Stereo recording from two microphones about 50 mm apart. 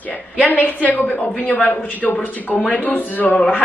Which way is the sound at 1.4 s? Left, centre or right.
Left.